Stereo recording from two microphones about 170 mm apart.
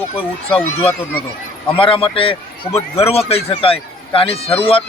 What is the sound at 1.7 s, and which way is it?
Speech, 30° left (ahead or behind).